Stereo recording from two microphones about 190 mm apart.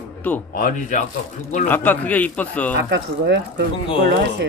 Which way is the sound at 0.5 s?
45° left (ahead or behind).